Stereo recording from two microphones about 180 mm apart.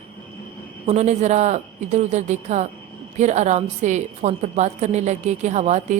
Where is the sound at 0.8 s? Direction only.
40° right (ahead or behind).